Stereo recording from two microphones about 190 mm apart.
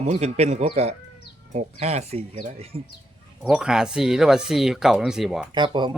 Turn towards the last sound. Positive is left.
turn(degrees=-25)  # may be behind; listen again after turning